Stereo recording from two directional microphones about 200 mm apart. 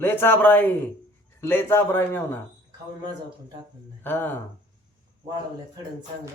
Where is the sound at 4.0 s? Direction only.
10° left (ahead or behind).